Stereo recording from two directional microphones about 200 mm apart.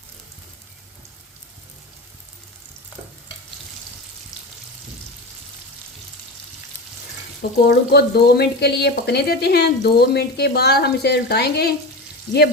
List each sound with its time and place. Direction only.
7.7 s speech: 55° left (ahead or behind)